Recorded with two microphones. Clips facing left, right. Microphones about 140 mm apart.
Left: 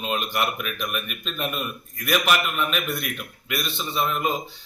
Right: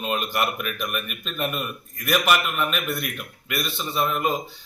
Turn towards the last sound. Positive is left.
turn(degrees=-5)  # may be behind; listen again after turning